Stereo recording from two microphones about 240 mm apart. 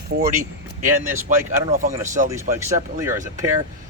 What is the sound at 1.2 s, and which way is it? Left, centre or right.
Speech, right.